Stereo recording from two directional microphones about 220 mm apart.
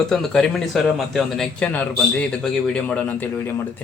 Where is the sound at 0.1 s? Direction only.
Centre (ahead or behind).